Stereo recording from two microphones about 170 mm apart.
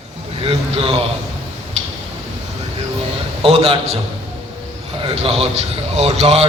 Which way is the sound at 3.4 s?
30° right (ahead or behind).